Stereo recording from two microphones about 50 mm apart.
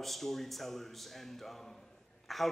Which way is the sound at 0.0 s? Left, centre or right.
Centre.